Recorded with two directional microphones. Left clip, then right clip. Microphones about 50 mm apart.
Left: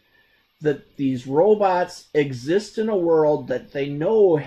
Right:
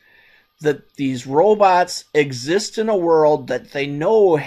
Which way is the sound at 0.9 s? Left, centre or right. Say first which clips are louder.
Right 2 dB; right.